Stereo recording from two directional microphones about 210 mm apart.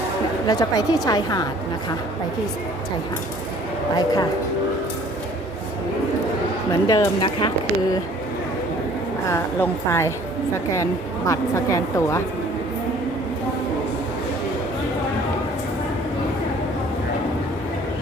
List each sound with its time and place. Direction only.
0.4 s a woman's voice: 15° left (ahead or behind)
3.9 s speech: 20° left (ahead or behind)
6.8 s speech: 20° left (ahead or behind)
9.3 s a woman's voice: 15° left (ahead or behind)
11.3 s a woman's voice: 15° left (ahead or behind)